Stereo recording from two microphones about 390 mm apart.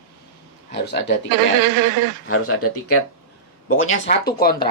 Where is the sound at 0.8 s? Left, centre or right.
Left.